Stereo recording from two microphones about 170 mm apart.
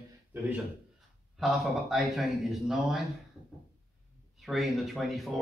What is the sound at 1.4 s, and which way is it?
Speech, centre (ahead or behind).